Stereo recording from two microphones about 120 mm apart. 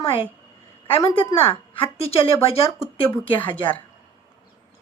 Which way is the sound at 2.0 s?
55° left (ahead or behind).